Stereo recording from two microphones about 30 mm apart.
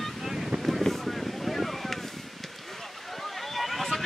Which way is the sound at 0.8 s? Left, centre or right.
Centre.